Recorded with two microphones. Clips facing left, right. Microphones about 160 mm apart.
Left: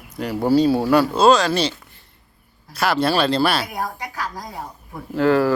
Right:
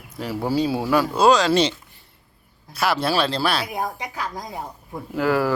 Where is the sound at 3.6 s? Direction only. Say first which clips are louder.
Even; 20° right (ahead or behind).